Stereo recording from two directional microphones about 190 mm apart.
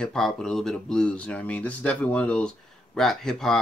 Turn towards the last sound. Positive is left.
turn(degrees=5)  # may be behind; listen again after turning